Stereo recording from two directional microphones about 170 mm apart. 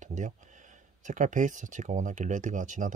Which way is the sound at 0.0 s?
45° right (ahead or behind).